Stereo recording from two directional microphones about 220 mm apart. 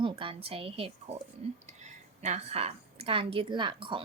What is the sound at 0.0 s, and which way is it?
A woman's voice, 25° right (ahead or behind).